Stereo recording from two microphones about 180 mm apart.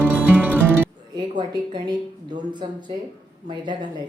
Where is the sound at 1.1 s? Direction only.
25° right (ahead or behind).